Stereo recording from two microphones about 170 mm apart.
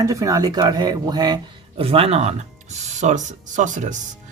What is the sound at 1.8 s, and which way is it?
Speech, 35° right (ahead or behind).